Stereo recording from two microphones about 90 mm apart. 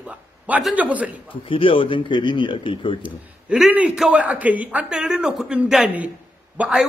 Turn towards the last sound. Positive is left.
turn(degrees=-10)  # may be behind; listen again after turning